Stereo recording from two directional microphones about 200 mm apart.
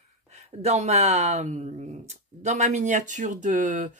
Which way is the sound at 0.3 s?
35° right (ahead or behind).